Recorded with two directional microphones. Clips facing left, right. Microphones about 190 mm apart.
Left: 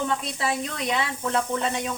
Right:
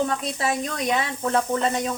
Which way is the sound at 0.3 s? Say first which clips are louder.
Right 2 dB; 45° right (ahead or behind).